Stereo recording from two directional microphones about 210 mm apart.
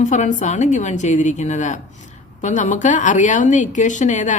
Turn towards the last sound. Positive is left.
turn(degrees=35)  # may be behind; listen again after turning